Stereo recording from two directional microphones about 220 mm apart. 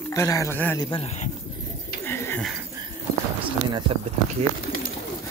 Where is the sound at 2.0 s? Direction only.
10° left (ahead or behind).